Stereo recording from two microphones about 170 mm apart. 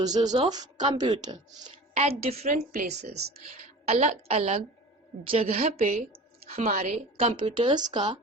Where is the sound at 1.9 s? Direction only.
40° right (ahead or behind).